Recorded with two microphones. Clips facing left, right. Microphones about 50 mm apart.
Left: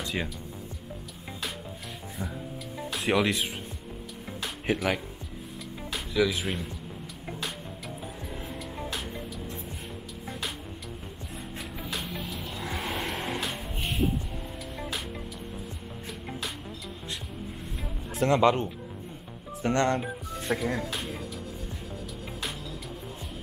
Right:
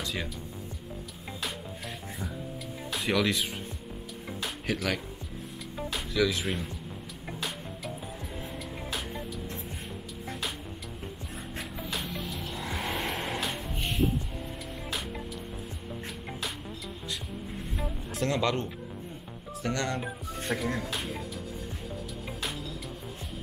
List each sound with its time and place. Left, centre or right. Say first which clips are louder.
0.0 s music: left 2 dB; centre
3.1 s speech: left 2 dB; centre
4.7 s speech: left 4 dB; left
6.1 s speech: left 2 dB; centre
6.4 s speech: even; centre
11.9 s vehicle: left 1 dB; centre
18.2 s speech: left 6 dB; left
20.0 s speech: left 1 dB; centre